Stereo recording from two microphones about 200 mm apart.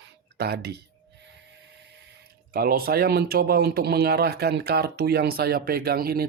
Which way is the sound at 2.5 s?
45° right (ahead or behind).